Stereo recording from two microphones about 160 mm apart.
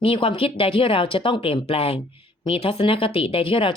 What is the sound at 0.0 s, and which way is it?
Speech, 35° left (ahead or behind).